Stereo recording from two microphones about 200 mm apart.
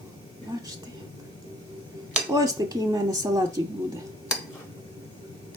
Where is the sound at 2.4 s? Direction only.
15° right (ahead or behind).